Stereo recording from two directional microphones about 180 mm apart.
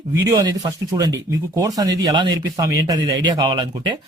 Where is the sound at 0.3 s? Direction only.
20° right (ahead or behind).